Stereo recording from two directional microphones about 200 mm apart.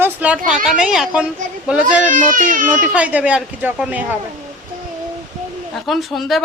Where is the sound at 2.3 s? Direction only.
45° right (ahead or behind).